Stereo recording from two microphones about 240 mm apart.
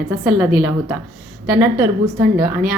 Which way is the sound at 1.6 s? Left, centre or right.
Centre.